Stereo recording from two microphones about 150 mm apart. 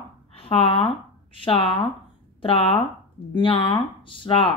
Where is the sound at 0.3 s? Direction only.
40° left (ahead or behind).